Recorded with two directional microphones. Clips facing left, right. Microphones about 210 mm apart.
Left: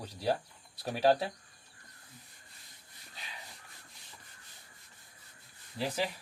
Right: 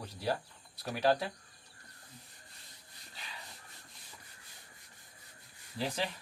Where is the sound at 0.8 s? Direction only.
30° left (ahead or behind).